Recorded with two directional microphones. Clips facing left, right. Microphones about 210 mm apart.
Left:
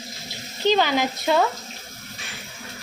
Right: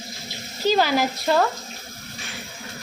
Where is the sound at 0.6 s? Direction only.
5° right (ahead or behind).